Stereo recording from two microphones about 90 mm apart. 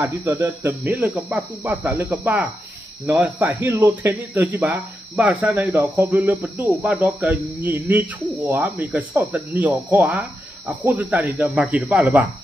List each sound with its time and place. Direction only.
0.0 s speech: 25° right (ahead or behind)